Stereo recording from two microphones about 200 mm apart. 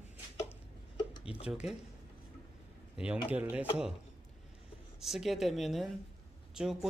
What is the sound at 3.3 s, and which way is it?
Speech, 10° right (ahead or behind).